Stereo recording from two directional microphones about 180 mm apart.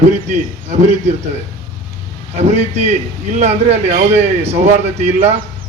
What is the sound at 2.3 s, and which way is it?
A man's voice, 40° right (ahead or behind).